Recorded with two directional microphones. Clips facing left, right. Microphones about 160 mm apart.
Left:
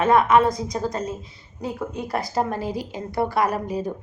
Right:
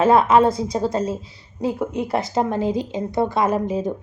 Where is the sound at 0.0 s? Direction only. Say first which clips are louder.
Right 2 dB; 30° right (ahead or behind).